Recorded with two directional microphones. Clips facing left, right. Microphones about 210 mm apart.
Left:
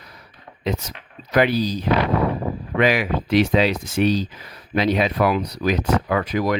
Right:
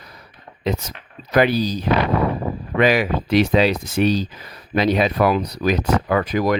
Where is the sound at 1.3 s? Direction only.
40° right (ahead or behind).